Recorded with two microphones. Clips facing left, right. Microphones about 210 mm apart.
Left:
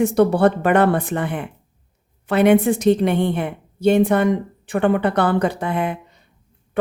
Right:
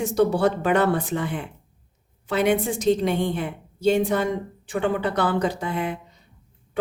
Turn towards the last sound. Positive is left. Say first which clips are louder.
# left 4 dB
turn(degrees=60)  # may be behind; listen again after turning